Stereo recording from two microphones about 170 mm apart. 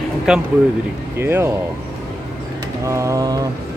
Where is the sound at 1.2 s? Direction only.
15° right (ahead or behind).